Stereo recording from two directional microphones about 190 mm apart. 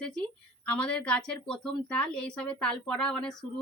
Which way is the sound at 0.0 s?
5° left (ahead or behind).